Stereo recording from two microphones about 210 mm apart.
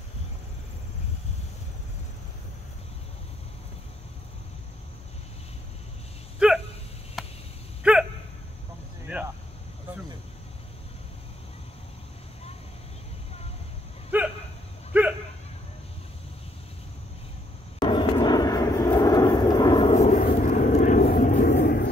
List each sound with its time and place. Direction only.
6.4 s a sound: 5° right (ahead or behind)
14.1 s hiccup: 10° right (ahead or behind)
14.9 s dog: 5° right (ahead or behind)
17.7 s vehicle: 20° left (ahead or behind)
20.0 s vehicle: 35° left (ahead or behind)